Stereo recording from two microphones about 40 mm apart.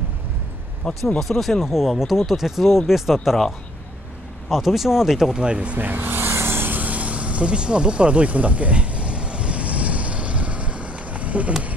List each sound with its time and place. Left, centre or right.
0.8 s speech: centre
1.2 s speech: centre
4.5 s speech: centre
5.3 s speech: right
5.8 s vehicle: right
6.7 s vehicle: right